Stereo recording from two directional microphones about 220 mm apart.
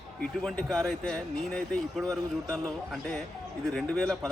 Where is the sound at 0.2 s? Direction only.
5° left (ahead or behind).